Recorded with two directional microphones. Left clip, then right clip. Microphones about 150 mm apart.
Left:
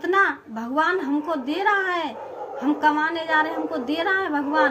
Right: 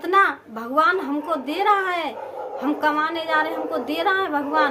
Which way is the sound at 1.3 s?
30° right (ahead or behind).